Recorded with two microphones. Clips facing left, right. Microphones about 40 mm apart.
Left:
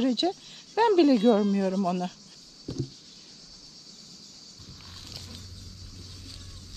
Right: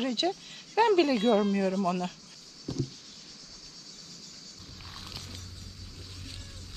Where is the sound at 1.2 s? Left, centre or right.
Right.